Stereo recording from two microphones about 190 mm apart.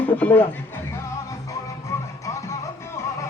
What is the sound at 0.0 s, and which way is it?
Music, 10° left (ahead or behind).